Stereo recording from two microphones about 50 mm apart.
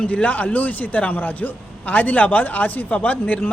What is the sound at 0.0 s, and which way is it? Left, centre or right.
A man's voice, left.